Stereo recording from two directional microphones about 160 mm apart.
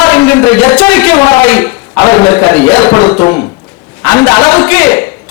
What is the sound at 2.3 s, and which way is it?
Speech, 15° left (ahead or behind).